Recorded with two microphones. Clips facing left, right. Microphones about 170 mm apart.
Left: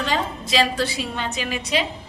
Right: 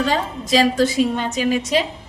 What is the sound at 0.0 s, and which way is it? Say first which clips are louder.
A woman's voice: right 4 dB; 45° right (ahead or behind).